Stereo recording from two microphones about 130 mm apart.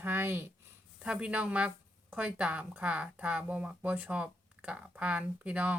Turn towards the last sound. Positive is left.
turn(degrees=-10)  # may be behind; listen again after turning